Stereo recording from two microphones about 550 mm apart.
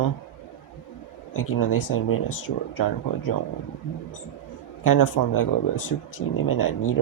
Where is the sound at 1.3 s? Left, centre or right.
Left.